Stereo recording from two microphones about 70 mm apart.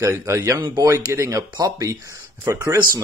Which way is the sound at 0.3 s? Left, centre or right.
Right.